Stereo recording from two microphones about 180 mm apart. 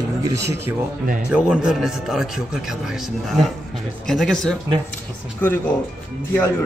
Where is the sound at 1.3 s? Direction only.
5° right (ahead or behind).